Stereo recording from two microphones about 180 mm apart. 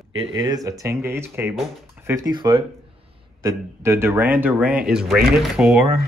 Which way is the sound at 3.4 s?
15° right (ahead or behind).